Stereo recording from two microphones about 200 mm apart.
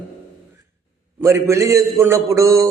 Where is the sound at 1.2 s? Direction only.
15° right (ahead or behind).